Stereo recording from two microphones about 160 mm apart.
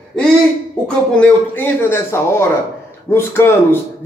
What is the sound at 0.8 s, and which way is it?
A man's voice, 5° left (ahead or behind).